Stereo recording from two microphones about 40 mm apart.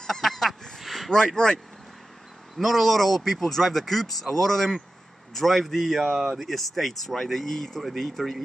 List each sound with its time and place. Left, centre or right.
0.0 s honk: centre
0.7 s a sound: centre
1.1 s speech: centre
2.5 s speech: centre
6.1 s speech: centre
6.4 s speech: centre